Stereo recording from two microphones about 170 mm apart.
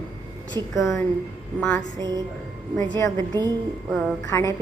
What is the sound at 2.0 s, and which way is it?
Speech, 25° right (ahead or behind).